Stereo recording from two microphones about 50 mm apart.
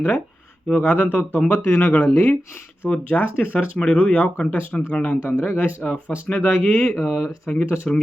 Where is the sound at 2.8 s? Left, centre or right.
Left.